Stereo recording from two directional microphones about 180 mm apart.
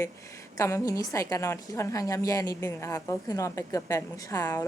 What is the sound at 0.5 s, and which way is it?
A woman's voice, 15° left (ahead or behind).